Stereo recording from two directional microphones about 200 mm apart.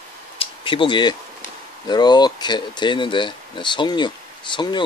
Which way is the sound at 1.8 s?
20° left (ahead or behind).